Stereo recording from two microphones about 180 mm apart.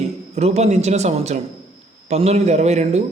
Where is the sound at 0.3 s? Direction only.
35° right (ahead or behind).